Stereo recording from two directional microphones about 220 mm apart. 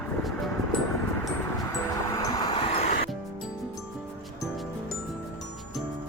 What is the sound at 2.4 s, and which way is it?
Vehicle, 25° left (ahead or behind).